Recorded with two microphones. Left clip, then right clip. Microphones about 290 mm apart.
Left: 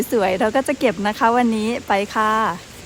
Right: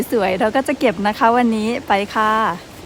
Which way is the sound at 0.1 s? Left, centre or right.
Centre.